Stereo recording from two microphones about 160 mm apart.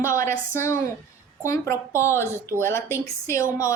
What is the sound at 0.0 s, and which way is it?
A woman's voice, 15° left (ahead or behind).